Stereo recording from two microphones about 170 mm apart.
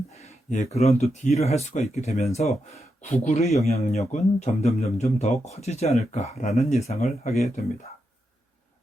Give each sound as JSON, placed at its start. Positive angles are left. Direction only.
{"t": 0.1, "sound": "a man's voice", "side_deg": 40}